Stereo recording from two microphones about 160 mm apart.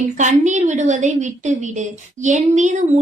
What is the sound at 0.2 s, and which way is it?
A woman's voice, 50° right (ahead or behind).